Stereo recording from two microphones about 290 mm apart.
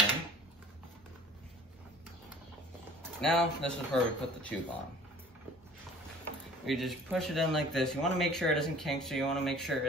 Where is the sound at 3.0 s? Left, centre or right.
Centre.